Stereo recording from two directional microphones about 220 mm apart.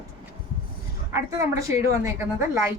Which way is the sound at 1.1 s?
15° right (ahead or behind).